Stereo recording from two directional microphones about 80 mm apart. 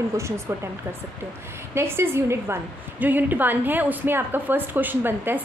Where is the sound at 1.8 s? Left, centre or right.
Right.